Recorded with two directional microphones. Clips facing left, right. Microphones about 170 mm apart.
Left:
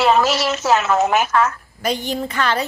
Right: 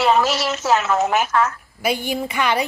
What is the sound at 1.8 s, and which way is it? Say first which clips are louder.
Speech: even; 10° right (ahead or behind).